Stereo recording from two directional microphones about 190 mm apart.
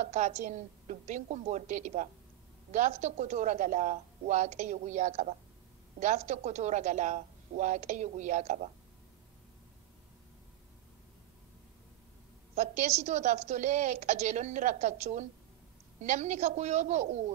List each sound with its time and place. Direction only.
0.0 s a woman's voice: 35° right (ahead or behind)
12.5 s a woman's voice: 35° right (ahead or behind)